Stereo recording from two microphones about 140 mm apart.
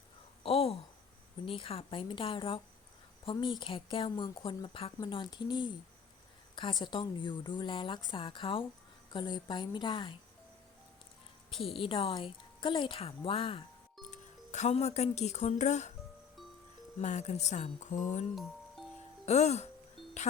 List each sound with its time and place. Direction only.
0.4 s a sound: 45° left (ahead or behind)
1.5 s a woman's voice: 40° left (ahead or behind)
11.7 s a woman's voice: 40° left (ahead or behind)
14.1 s speech: 55° left (ahead or behind)
17.0 s speech: 55° left (ahead or behind)